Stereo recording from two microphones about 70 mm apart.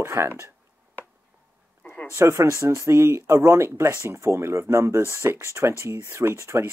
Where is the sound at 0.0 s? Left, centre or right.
Right.